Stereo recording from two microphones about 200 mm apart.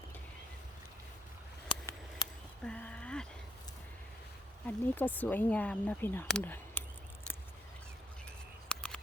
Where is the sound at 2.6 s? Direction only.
5° left (ahead or behind).